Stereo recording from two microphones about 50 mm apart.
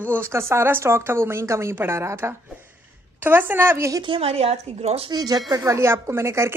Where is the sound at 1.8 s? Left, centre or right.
Right.